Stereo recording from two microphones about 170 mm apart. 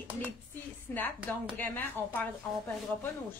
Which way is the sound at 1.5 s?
10° left (ahead or behind).